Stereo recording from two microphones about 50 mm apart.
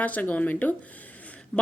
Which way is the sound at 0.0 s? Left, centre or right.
Left.